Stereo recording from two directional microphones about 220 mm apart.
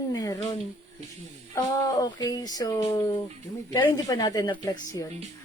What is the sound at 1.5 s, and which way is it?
A woman's voice, 15° left (ahead or behind).